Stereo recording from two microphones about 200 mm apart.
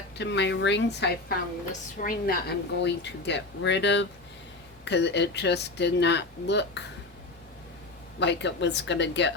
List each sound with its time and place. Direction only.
0.2 s a woman's voice: 60° left (ahead or behind)
2.0 s a woman's voice: 45° left (ahead or behind)
8.2 s a woman's voice: 60° left (ahead or behind)